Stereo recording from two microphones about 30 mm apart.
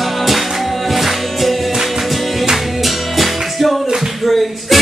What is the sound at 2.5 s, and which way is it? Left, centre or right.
Music, centre.